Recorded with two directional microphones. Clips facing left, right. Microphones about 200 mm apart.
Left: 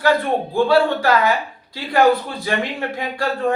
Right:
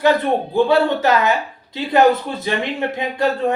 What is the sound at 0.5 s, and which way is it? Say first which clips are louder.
A woman's voice: even; 20° right (ahead or behind).